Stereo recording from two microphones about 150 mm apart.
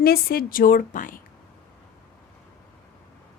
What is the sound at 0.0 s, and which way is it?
A woman's voice, 90° left.